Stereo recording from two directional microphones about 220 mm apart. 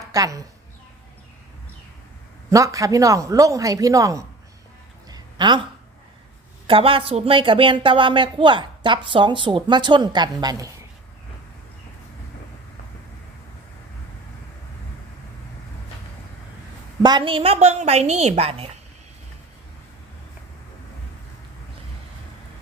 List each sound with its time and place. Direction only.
0.0 s a woman's voice: 15° right (ahead or behind)
2.5 s speech: 15° right (ahead or behind)
5.0 s a sound: 20° right (ahead or behind)
6.7 s speech: 25° right (ahead or behind)
17.0 s speech: 20° right (ahead or behind)